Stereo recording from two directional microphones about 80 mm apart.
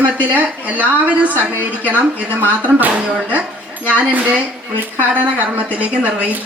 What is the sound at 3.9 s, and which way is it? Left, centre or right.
A woman's voice, centre.